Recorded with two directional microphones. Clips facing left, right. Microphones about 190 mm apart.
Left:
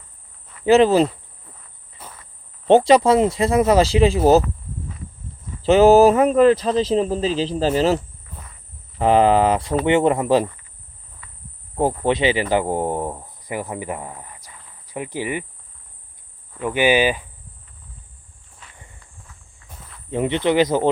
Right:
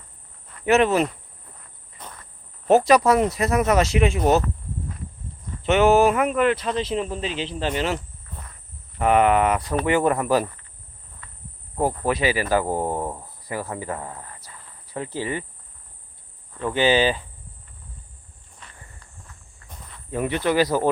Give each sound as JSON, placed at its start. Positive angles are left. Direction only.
{"t": 0.6, "sound": "speech", "side_deg": 30}
{"t": 2.0, "sound": "insect", "side_deg": 5}
{"t": 2.6, "sound": "speech", "side_deg": 25}
{"t": 5.6, "sound": "speech", "side_deg": 35}
{"t": 11.2, "sound": "cricket", "side_deg": 5}
{"t": 11.8, "sound": "speech", "side_deg": 25}
{"t": 16.6, "sound": "speech", "side_deg": 15}
{"t": 18.6, "sound": "walk", "side_deg": 5}
{"t": 20.1, "sound": "speech", "side_deg": 20}